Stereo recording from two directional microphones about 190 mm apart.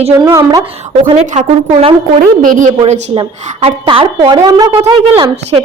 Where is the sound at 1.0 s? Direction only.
35° right (ahead or behind).